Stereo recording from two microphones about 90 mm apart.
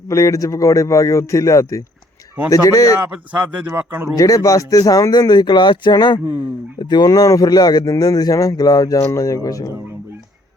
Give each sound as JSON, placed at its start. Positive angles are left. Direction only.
{"t": 0.1, "sound": "a man's voice", "side_deg": 40}
{"t": 3.1, "sound": "speech", "side_deg": -15}
{"t": 4.2, "sound": "a man's voice", "side_deg": 40}